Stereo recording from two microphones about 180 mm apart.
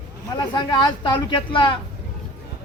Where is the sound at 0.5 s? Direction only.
25° left (ahead or behind).